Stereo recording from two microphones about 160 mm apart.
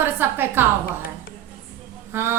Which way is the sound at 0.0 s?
15° right (ahead or behind).